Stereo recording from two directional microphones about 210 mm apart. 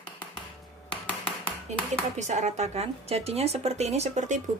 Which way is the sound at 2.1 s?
35° right (ahead or behind).